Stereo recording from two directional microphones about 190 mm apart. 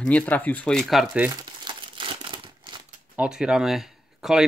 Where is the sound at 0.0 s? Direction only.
5° left (ahead or behind).